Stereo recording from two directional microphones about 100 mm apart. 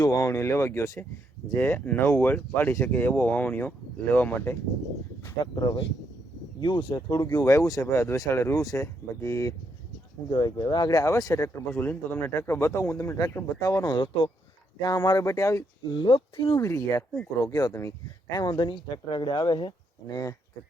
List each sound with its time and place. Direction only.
0.0 s speech: 35° left (ahead or behind); by 4.5 s 20° left (ahead or behind)
5.2 s speech: 35° left (ahead or behind)
6.6 s speech: 50° left (ahead or behind)
7.3 s speech: 30° left (ahead or behind)
10.3 s speech: 45° left (ahead or behind)
11.8 s speech: 20° left (ahead or behind)
15.9 s speech: 55° left (ahead or behind)
16.6 s speech: 30° left (ahead or behind); by 19.7 s 50° left (ahead or behind)